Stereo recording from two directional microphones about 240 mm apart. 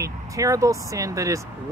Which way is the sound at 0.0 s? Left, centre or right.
Centre.